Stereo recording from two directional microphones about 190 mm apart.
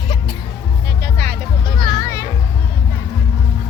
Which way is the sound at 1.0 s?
55° right (ahead or behind).